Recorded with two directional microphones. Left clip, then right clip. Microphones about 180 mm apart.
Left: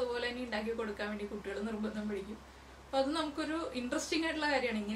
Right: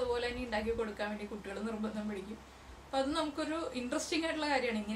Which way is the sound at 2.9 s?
Centre (ahead or behind).